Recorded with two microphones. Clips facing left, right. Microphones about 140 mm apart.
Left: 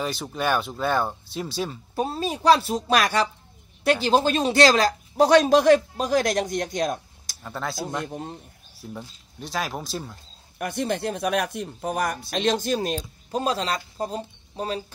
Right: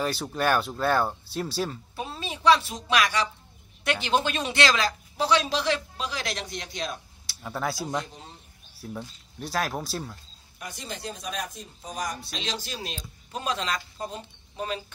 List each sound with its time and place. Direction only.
0.0 s speech: centre (ahead or behind)
2.0 s a woman's voice: 40° left (ahead or behind)
7.4 s speech: 5° right (ahead or behind)
8.1 s speech: 55° left (ahead or behind)
8.8 s speech: centre (ahead or behind)
10.6 s speech: 60° left (ahead or behind); by 14.8 s 35° left (ahead or behind)